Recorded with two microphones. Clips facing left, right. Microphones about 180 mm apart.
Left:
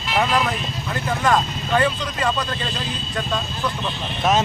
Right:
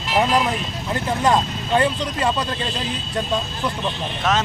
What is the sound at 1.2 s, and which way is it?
Speech, 25° right (ahead or behind).